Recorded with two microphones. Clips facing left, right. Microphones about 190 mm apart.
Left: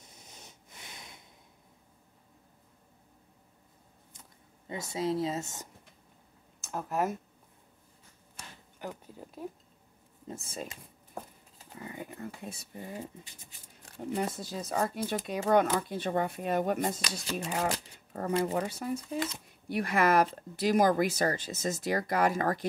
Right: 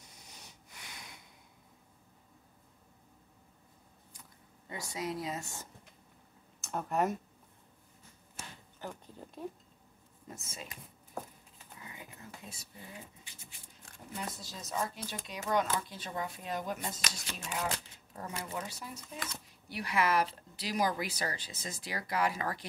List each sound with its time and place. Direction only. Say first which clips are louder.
0.0 s a sound: left 2 dB; 25° left (ahead or behind)
4.1 s speech: even; 25° left (ahead or behind)
6.6 s speech: even; centre (ahead or behind)
8.7 s speech: left 3 dB; 10° left (ahead or behind)
10.2 s speech: left 7 dB; 30° left (ahead or behind)
11.5 s speech: left 10 dB; 50° left (ahead or behind)
12.9 s speech: left 9 dB; 40° left (ahead or behind)
14.1 s speech: left 9 dB; 55° left (ahead or behind)
17.2 s speech: left 8 dB; 35° left (ahead or behind)
18.4 s speech: left 10 dB; 60° left (ahead or behind)